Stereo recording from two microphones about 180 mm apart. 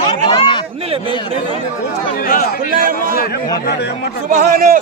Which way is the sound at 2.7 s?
50° right (ahead or behind).